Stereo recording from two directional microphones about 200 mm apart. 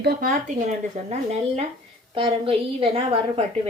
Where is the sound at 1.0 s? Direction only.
35° right (ahead or behind).